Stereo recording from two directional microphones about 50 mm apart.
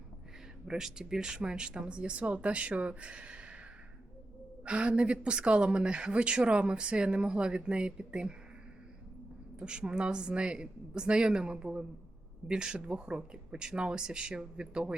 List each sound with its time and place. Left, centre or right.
0.7 s a woman's voice: centre
9.6 s speech: centre